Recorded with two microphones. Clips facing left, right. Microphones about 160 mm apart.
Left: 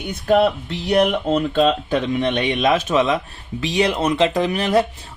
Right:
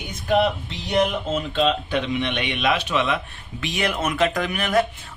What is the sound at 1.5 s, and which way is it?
Speech, 45° left (ahead or behind).